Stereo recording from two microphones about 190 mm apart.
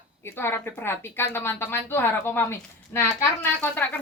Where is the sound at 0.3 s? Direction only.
10° left (ahead or behind).